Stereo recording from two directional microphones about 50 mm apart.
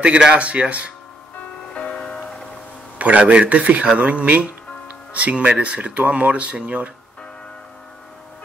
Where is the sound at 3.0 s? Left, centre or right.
Right.